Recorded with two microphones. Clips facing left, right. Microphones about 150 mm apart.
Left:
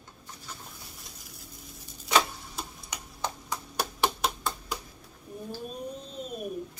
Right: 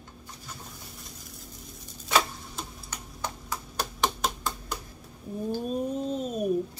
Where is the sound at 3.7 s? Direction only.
5° left (ahead or behind).